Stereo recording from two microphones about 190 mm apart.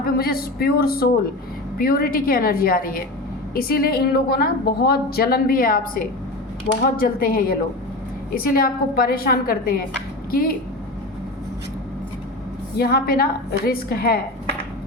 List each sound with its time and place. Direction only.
0.0 s a woman's voice: 50° left (ahead or behind)
12.7 s a woman's voice: 55° left (ahead or behind)